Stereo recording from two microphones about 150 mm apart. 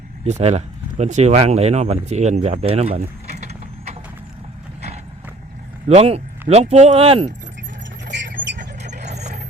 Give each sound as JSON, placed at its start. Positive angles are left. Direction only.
{"t": 0.3, "sound": "speech", "side_deg": -45}
{"t": 5.9, "sound": "speech", "side_deg": -45}
{"t": 8.3, "sound": "vehicle", "side_deg": -65}
{"t": 9.0, "sound": "vehicle", "side_deg": -50}